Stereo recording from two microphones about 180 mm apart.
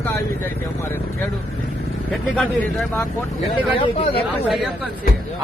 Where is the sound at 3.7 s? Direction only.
30° left (ahead or behind).